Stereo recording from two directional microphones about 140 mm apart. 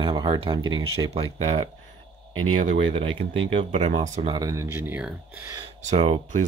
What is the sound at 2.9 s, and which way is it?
Speech, 40° right (ahead or behind).